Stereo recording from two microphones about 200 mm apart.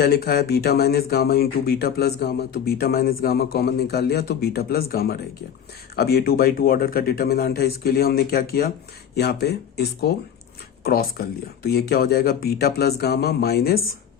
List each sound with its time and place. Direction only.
0.0 s speech: 50° left (ahead or behind)